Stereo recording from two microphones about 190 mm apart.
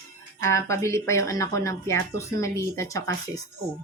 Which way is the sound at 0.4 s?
15° left (ahead or behind).